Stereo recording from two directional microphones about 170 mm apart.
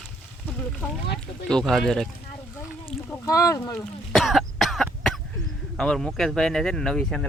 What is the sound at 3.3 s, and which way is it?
Speech, 20° left (ahead or behind).